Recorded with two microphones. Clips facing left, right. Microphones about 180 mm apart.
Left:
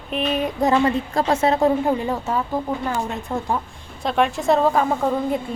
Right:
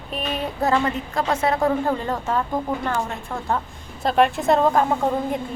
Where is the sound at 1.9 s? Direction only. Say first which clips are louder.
Left 1 dB; 10° left (ahead or behind).